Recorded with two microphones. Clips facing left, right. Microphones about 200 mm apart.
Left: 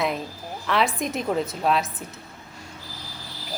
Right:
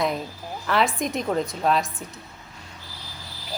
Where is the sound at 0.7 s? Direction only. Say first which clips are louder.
Right 1 dB; centre (ahead or behind).